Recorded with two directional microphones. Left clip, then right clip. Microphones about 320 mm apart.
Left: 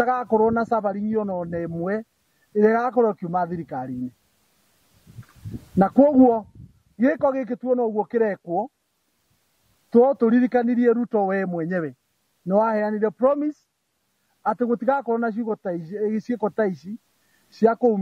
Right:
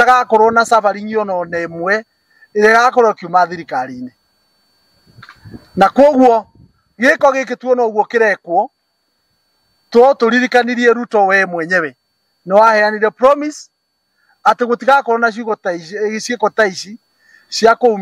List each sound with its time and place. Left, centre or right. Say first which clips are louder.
0.0 s speech: right 11 dB; centre
5.8 s speech: right 8 dB; centre
8.5 s speech: right 11 dB; centre
10.0 s speech: right 9 dB; centre